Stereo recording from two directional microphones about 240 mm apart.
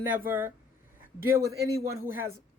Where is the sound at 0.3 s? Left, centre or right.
Centre.